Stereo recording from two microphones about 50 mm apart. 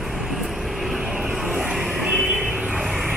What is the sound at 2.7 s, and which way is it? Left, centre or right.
Vehicle, centre.